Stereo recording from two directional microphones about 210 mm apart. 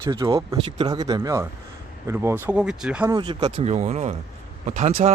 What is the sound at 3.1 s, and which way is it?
Speech, 20° right (ahead or behind).